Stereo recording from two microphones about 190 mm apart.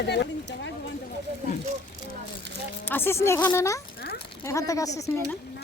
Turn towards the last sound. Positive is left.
turn(degrees=15)  # may be behind; listen again after turning